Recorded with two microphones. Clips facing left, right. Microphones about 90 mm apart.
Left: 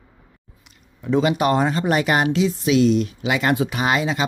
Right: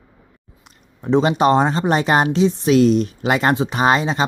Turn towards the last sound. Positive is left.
turn(degrees=-35)  # may be behind; listen again after turning